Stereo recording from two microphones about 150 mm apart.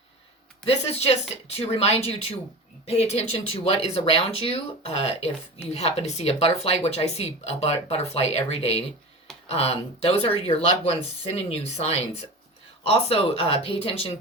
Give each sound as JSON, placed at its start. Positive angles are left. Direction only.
{"t": 0.6, "sound": "speech", "side_deg": 45}